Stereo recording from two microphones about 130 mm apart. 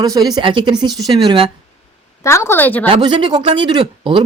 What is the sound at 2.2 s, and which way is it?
Speech, 20° left (ahead or behind).